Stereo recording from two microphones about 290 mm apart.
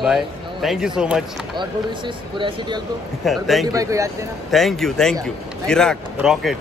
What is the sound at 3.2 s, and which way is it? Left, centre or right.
Speech, centre.